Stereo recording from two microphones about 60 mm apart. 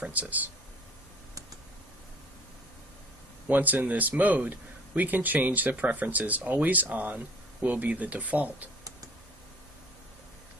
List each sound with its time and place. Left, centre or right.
0.0 s speech: right
3.5 s speech: right